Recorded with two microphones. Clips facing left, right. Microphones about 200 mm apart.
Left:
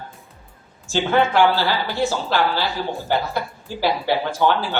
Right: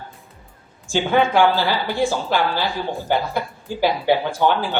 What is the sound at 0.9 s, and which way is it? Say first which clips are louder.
A woman's voice: right 1 dB; 15° right (ahead or behind).